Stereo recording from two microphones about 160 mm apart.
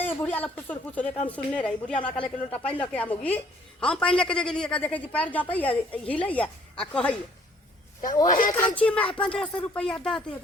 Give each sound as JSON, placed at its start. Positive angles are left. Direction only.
{"t": 0.0, "sound": "a woman's voice", "side_deg": 10}
{"t": 2.0, "sound": "speech", "side_deg": 30}
{"t": 2.5, "sound": "a woman's voice", "side_deg": 10}
{"t": 8.3, "sound": "speech", "side_deg": 55}
{"t": 8.7, "sound": "a woman's voice", "side_deg": 10}